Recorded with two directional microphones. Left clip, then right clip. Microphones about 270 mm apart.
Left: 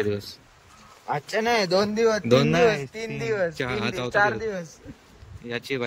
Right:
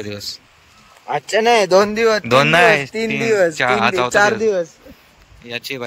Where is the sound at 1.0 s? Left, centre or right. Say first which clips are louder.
Right 9 dB; right.